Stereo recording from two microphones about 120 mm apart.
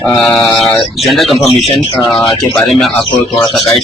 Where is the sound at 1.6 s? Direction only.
45° left (ahead or behind).